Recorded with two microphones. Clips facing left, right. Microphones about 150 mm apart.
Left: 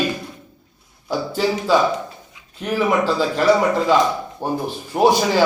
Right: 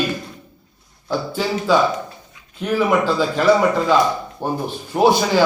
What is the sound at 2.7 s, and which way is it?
Speech, centre (ahead or behind).